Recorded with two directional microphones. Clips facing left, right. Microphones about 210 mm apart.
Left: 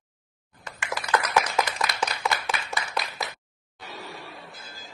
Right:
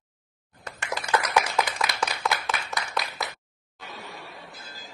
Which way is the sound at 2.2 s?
5° left (ahead or behind).